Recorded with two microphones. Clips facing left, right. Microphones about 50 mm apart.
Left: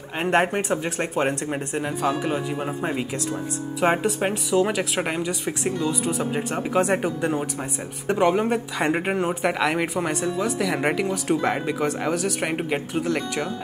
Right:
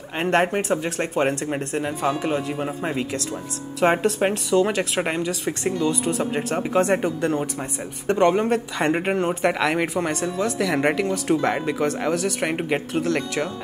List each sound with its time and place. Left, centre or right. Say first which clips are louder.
0.3 s speech: right 1 dB; centre
12.6 s speech: right 2 dB; centre
13.0 s speech: right 2 dB; centre